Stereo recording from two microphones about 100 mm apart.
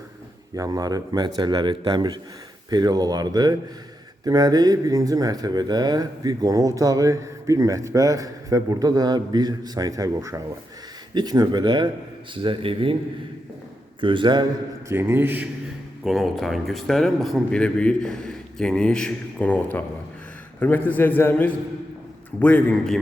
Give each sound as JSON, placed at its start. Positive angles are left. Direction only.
{"t": 0.5, "sound": "speech", "side_deg": -35}
{"t": 12.4, "sound": "speech", "side_deg": -60}
{"t": 14.0, "sound": "speech", "side_deg": -55}
{"t": 14.8, "sound": "a man's voice", "side_deg": -25}
{"t": 16.0, "sound": "a man's voice", "side_deg": 0}
{"t": 20.6, "sound": "a man's voice", "side_deg": 15}